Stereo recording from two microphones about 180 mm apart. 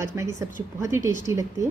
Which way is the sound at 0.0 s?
15° right (ahead or behind).